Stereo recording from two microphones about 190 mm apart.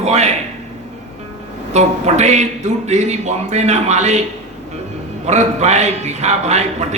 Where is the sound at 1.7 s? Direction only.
35° right (ahead or behind).